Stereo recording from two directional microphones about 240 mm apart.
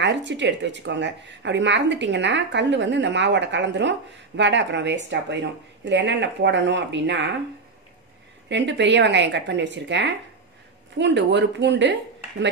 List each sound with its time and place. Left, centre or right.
0.0 s speech: right
8.5 s speech: right